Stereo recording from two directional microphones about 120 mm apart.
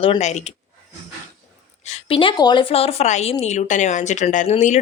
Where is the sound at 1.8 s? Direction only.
65° left (ahead or behind).